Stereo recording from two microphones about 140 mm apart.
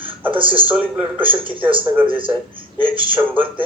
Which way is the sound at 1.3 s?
40° right (ahead or behind).